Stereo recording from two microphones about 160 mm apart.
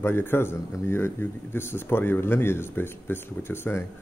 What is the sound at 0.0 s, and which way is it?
A man's voice, 15° left (ahead or behind).